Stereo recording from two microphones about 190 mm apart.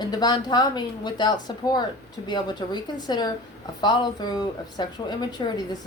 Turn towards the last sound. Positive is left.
turn(degrees=20)  # may be behind; listen again after turning